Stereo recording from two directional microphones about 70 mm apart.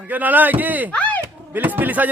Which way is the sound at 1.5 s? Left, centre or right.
Right.